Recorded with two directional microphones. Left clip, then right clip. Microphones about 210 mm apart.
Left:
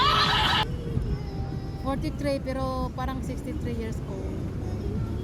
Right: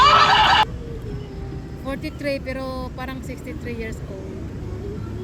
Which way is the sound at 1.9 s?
Centre (ahead or behind).